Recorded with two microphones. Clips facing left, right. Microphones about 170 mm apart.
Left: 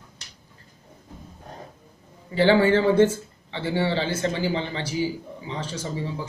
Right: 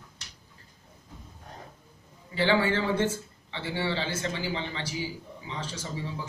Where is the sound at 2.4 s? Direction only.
45° left (ahead or behind).